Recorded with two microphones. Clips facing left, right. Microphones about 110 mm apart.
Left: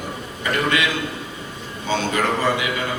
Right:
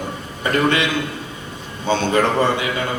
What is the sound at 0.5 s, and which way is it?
Speech, 30° right (ahead or behind).